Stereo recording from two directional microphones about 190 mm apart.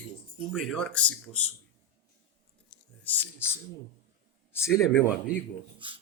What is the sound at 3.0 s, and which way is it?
Speech, 10° left (ahead or behind).